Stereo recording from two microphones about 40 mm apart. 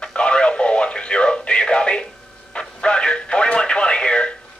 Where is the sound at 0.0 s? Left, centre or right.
Left.